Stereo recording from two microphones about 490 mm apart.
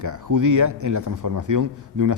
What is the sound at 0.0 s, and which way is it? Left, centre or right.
Speech, right.